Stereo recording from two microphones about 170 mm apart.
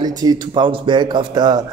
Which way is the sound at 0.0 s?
25° right (ahead or behind).